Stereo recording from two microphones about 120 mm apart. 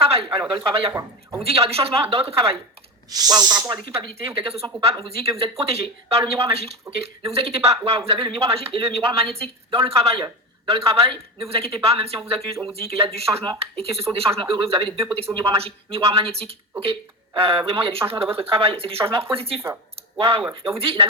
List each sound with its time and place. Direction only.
0.0 s a sound: 50° right (ahead or behind)
0.5 s speech: 45° right (ahead or behind)
1.5 s speech: 55° right (ahead or behind)
3.1 s speech: 35° right (ahead or behind)
3.9 s speech: 55° right (ahead or behind)